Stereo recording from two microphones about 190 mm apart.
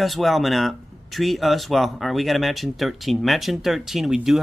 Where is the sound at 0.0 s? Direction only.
Centre (ahead or behind).